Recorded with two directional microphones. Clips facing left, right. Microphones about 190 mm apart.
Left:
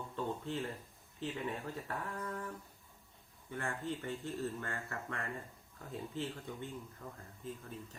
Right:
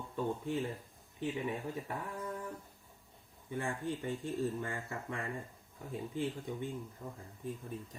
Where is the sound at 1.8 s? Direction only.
15° right (ahead or behind).